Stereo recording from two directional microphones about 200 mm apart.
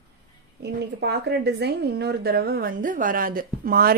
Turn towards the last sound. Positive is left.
turn(degrees=-50)  # may be behind; listen again after turning